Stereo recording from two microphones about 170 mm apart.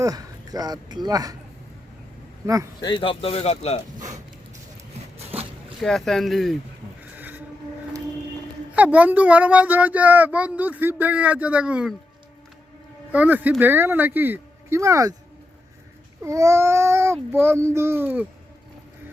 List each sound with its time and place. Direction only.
0.0 s speech: 20° right (ahead or behind)
2.8 s speech: 30° left (ahead or behind)
5.1 s a sound: 35° right (ahead or behind)
5.8 s speech: centre (ahead or behind)
7.0 s a sound: 10° right (ahead or behind)
8.7 s speech: 10° right (ahead or behind)
13.1 s speech: 10° right (ahead or behind)
16.2 s speech: 15° right (ahead or behind)